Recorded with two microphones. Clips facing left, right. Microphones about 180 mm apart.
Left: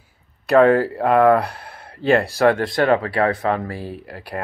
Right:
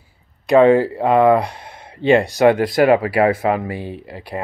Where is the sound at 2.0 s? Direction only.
Centre (ahead or behind).